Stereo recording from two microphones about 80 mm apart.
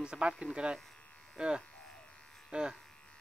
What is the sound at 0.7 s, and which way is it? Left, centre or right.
Electric shaver, centre.